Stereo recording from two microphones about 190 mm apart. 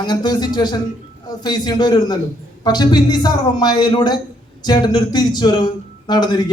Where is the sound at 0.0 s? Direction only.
20° left (ahead or behind).